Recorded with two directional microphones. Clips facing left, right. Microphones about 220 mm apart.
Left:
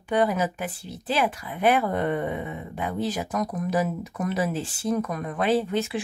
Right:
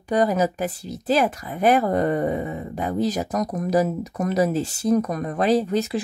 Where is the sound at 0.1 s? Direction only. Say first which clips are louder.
Right 3 dB; 40° right (ahead or behind).